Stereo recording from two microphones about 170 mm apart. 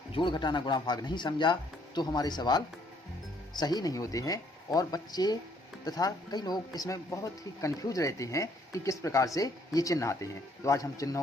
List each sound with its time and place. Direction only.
0.1 s speech: 30° left (ahead or behind)